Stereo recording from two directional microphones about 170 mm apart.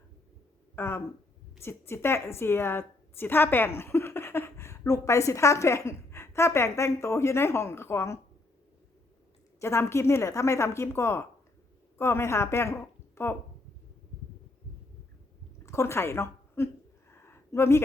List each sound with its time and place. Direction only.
0.8 s a woman's voice: 15° left (ahead or behind)
9.6 s a woman's voice: 15° left (ahead or behind)
15.6 s a woman's voice: 15° left (ahead or behind)
17.1 s a sound: 15° left (ahead or behind)